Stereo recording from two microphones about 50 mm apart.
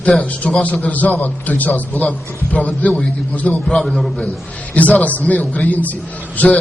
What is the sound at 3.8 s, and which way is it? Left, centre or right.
Speech, centre.